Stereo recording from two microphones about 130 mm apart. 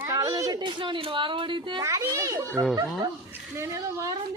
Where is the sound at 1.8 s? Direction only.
25° right (ahead or behind).